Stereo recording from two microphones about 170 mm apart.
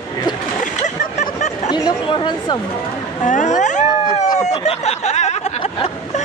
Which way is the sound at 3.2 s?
45° left (ahead or behind).